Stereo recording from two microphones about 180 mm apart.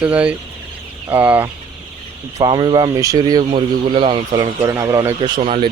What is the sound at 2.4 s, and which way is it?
Speech, 25° right (ahead or behind).